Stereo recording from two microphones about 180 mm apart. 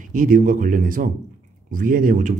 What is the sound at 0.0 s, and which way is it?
Speech, 50° right (ahead or behind).